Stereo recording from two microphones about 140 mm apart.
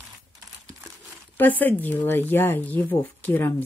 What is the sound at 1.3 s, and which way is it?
Speech, 15° left (ahead or behind).